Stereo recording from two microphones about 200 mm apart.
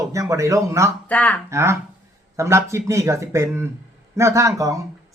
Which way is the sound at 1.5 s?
15° right (ahead or behind).